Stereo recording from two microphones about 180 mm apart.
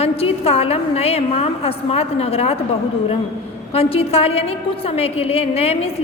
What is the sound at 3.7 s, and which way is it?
A woman's voice, 35° left (ahead or behind).